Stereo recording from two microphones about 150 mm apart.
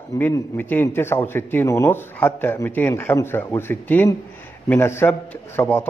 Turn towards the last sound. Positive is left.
turn(degrees=15)  # may be behind; listen again after turning